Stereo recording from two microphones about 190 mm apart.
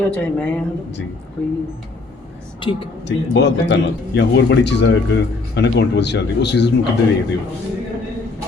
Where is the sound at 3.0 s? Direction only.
70° left (ahead or behind).